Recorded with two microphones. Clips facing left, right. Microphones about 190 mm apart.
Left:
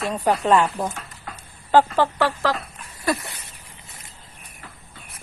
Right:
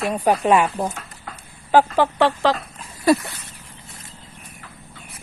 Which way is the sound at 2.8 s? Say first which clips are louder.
Right 7 dB; 30° right (ahead or behind).